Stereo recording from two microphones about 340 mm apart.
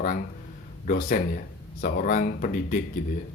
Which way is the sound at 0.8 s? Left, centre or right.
Left.